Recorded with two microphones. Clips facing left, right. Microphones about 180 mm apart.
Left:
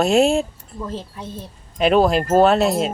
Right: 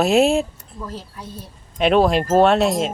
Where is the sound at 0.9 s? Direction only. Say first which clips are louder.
Left 4 dB; 25° left (ahead or behind).